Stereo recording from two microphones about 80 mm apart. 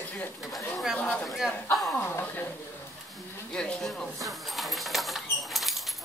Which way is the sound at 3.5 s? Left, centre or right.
Centre.